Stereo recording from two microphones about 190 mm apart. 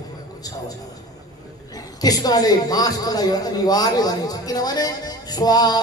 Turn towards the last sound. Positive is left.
turn(degrees=20)  # may be behind; listen again after turning